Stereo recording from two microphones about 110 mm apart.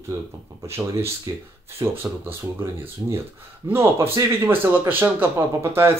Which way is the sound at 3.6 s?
25° right (ahead or behind).